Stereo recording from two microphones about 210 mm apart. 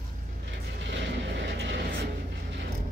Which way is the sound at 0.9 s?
60° right (ahead or behind).